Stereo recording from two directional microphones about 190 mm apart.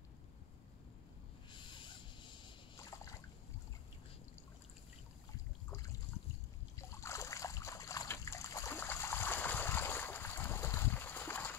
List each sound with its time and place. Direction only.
1.5 s a sound: 25° left (ahead or behind)
5.7 s trickle: 15° left (ahead or behind)
6.8 s splash: 15° left (ahead or behind)